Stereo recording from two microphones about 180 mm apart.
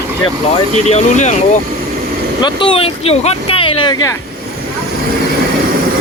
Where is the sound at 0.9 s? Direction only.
40° left (ahead or behind).